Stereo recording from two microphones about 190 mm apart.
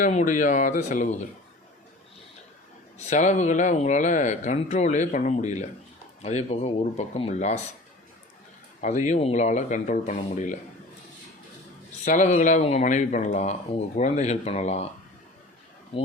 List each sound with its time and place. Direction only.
0.0 s speech: 40° left (ahead or behind)
3.0 s speech: 40° left (ahead or behind)
8.8 s speech: 40° left (ahead or behind)
12.0 s speech: 40° left (ahead or behind)